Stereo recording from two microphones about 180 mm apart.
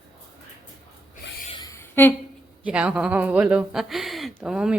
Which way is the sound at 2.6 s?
5° right (ahead or behind).